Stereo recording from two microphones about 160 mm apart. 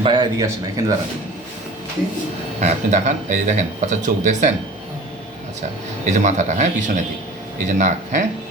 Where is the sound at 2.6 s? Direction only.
45° right (ahead or behind).